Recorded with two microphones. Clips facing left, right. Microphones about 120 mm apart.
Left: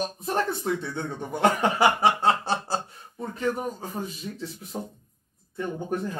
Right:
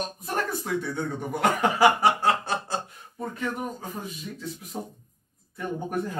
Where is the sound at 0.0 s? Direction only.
25° left (ahead or behind).